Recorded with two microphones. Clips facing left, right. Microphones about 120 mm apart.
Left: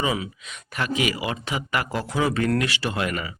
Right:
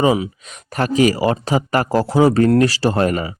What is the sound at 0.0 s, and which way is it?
Speech, 35° right (ahead or behind).